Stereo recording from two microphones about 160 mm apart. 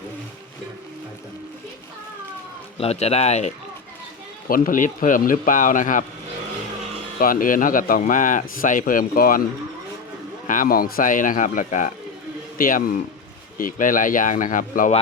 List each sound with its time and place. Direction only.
2.7 s speech: 40° left (ahead or behind)
4.4 s speech: 60° left (ahead or behind)
7.2 s speech: 60° left (ahead or behind)
10.4 s speech: 55° left (ahead or behind)